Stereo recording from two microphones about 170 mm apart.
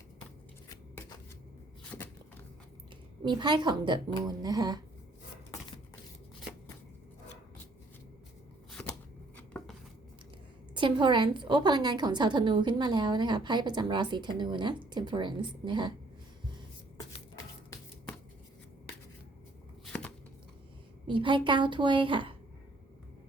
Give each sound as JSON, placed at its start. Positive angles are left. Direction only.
{"t": 0.7, "sound": "shuffling cards", "side_deg": 20}
{"t": 3.2, "sound": "a woman's voice", "side_deg": -25}
{"t": 5.5, "sound": "a sound", "side_deg": 25}
{"t": 9.5, "sound": "a sound", "side_deg": 5}
{"t": 10.8, "sound": "a woman's voice", "side_deg": -30}
{"t": 19.8, "sound": "chopping", "side_deg": 5}
{"t": 21.1, "sound": "a woman's voice", "side_deg": -30}